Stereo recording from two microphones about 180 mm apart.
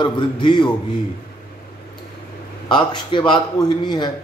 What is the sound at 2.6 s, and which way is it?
A man's voice, 25° left (ahead or behind).